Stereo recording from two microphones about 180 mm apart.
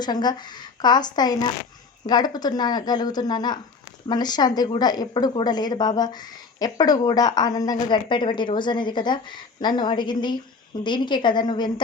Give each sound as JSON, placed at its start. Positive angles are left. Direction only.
{"t": 0.0, "sound": "a woman's voice", "side_deg": 25}